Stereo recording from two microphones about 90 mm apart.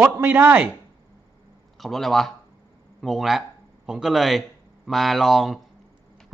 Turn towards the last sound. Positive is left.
turn(degrees=0)  # may be behind; listen again after turning